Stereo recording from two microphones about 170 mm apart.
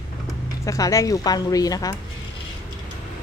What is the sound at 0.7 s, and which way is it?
A woman's voice, 20° left (ahead or behind).